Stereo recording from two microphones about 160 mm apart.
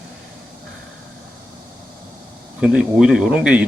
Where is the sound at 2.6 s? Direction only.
5° right (ahead or behind).